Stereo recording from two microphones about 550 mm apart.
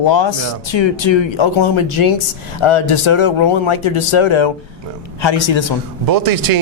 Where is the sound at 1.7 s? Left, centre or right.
Left.